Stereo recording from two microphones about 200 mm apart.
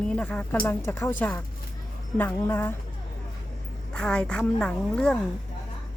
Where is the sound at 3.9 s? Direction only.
5° left (ahead or behind).